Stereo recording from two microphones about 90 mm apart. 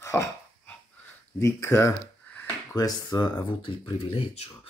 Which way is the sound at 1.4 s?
30° left (ahead or behind).